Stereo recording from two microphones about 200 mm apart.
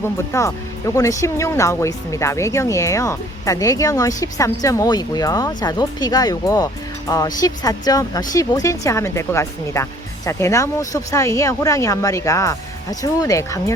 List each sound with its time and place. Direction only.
0.3 s speech: 15° left (ahead or behind)